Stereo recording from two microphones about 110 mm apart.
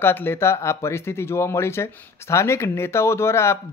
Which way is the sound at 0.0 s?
20° left (ahead or behind).